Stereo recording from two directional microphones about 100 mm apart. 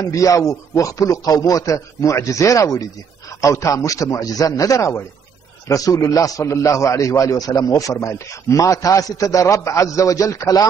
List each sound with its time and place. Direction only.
0.1 s a man's voice: 30° left (ahead or behind)